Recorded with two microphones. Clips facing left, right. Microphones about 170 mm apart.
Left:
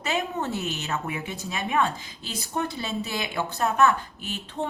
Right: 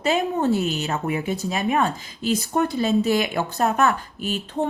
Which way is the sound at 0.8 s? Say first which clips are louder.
Right 6 dB; 35° right (ahead or behind).